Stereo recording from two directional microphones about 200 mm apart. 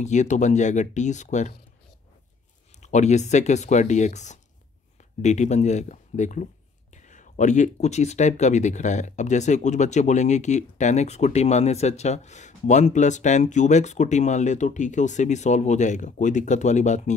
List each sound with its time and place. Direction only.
0.0 s speech: 35° left (ahead or behind)
2.8 s speech: 35° left (ahead or behind)